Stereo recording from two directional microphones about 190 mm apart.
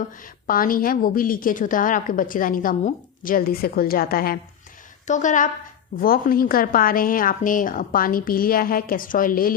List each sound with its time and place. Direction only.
0.4 s a woman's voice: 45° left (ahead or behind)
5.0 s a woman's voice: 40° left (ahead or behind)